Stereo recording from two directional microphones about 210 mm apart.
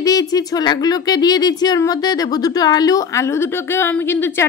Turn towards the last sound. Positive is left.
turn(degrees=10)  # may be behind; listen again after turning